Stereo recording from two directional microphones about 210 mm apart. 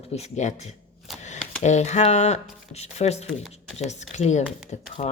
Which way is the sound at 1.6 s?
35° left (ahead or behind).